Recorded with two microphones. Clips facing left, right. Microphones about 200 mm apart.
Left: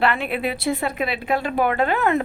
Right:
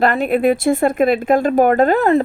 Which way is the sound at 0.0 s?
45° right (ahead or behind).